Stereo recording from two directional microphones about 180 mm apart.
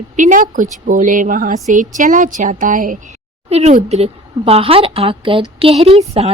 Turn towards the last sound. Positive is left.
turn(degrees=-35)  # may be behind; listen again after turning